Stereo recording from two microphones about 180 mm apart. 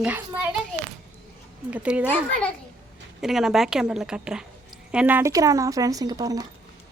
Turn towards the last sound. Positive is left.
turn(degrees=-20)  # may be behind; listen again after turning